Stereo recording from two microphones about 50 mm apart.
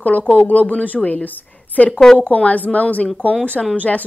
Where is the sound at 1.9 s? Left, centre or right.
Centre.